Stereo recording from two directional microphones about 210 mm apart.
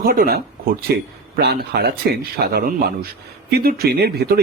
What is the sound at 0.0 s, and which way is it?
A man's voice, 45° right (ahead or behind).